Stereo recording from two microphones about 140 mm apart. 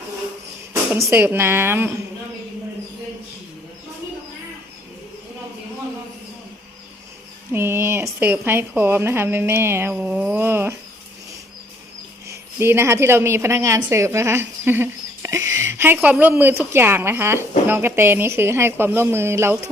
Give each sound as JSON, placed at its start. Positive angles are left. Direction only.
{"t": 0.9, "sound": "a woman's voice", "side_deg": -20}
{"t": 7.5, "sound": "a woman's voice", "side_deg": -15}
{"t": 12.3, "sound": "a woman's voice", "side_deg": -20}